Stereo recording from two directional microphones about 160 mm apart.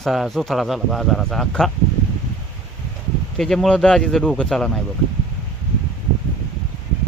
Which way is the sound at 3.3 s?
Centre (ahead or behind).